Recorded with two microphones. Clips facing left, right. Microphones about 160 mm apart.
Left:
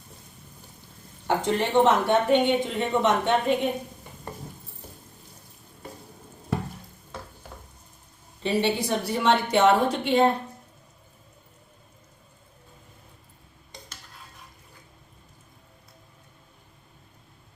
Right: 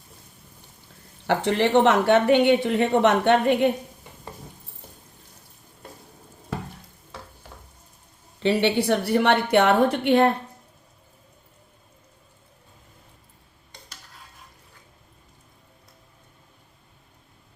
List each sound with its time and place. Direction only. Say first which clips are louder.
1.3 s a woman's voice: right 4 dB; 70° right (ahead or behind)
8.4 s a woman's voice: right 4 dB; 70° right (ahead or behind)